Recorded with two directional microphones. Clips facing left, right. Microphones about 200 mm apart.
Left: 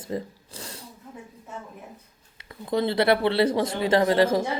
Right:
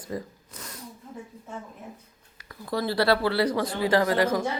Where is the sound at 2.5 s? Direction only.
20° left (ahead or behind).